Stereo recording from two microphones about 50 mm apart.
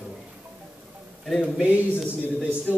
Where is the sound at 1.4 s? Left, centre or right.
Centre.